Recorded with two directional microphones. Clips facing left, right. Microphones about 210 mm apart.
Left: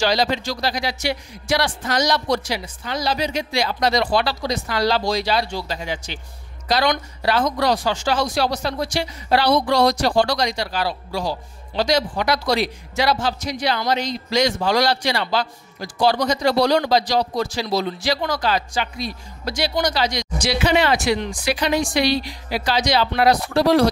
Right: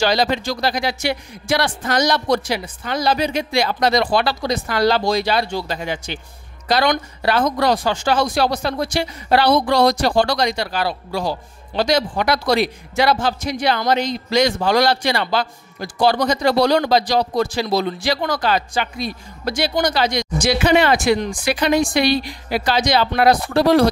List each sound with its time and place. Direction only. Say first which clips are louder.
0.0 s speech: right 2 dB; 55° right (ahead or behind)